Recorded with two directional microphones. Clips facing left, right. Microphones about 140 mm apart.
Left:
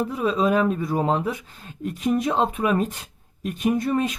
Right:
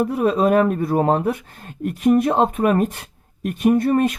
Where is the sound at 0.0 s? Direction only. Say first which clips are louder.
Right 4 dB; 60° right (ahead or behind).